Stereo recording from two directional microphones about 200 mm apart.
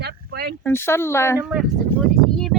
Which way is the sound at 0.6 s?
10° left (ahead or behind).